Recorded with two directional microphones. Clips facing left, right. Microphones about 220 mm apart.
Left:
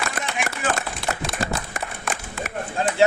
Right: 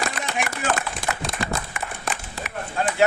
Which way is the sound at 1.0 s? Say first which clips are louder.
Left 2 dB; 45° right (ahead or behind).